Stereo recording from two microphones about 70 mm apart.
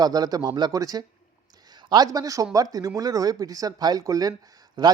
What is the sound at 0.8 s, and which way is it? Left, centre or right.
A man's voice, right.